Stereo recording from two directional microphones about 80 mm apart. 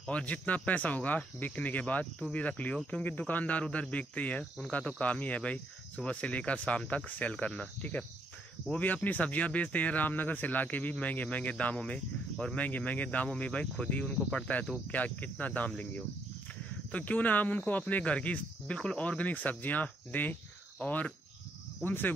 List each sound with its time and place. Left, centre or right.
0.0 s speech: centre